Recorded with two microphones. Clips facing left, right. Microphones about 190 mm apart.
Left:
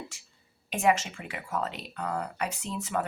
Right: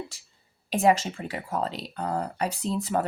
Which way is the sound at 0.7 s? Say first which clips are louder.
Right 4 dB; 35° right (ahead or behind).